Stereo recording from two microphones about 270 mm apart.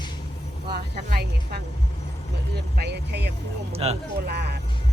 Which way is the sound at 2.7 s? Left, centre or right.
Right.